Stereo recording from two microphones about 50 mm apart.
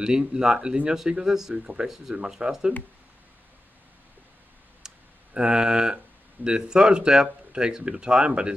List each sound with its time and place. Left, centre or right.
0.0 s speech: centre
4.8 s clicking: centre
6.4 s speech: centre